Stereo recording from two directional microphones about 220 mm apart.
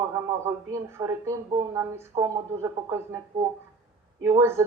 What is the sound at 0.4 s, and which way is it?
Speech, 10° right (ahead or behind).